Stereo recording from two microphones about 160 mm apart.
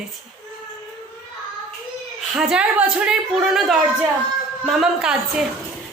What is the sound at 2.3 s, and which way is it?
A woman's voice, 5° right (ahead or behind).